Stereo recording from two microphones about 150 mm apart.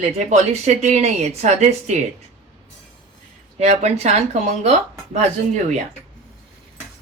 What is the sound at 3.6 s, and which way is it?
Speech, 45° right (ahead or behind).